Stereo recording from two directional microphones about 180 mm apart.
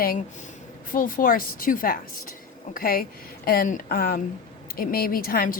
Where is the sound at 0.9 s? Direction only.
50° left (ahead or behind).